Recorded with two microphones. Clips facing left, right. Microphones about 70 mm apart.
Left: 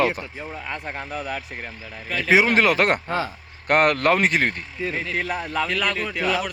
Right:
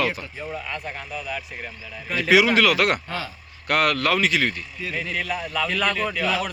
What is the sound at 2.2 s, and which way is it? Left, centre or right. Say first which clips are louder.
A man's voice: even; left.